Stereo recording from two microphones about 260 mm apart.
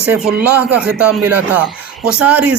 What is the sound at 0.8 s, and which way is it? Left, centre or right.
Speech, centre.